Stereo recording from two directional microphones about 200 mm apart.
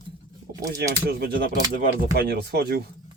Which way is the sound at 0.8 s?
50° right (ahead or behind).